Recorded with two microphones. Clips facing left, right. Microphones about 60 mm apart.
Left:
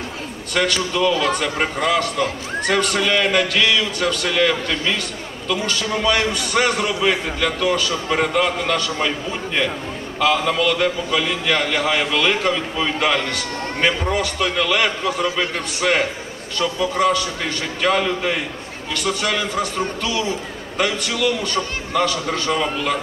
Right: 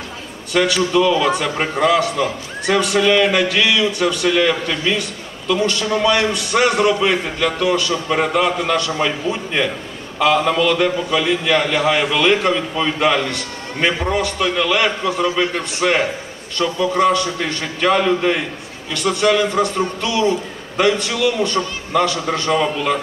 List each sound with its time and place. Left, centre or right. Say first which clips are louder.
0.5 s a man's voice: right 4 dB; centre
1.4 s a man's voice: right 3 dB; centre